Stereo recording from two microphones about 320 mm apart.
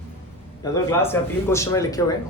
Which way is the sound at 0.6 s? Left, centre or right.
Centre.